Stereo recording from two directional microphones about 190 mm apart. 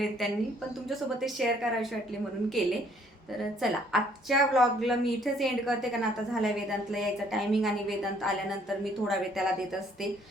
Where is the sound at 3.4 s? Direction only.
Centre (ahead or behind).